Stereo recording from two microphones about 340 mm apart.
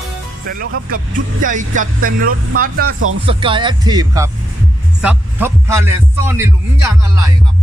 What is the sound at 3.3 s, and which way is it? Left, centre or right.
A man's voice, centre.